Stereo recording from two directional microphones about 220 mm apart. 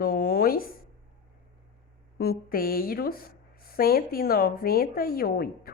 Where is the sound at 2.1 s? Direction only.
45° left (ahead or behind).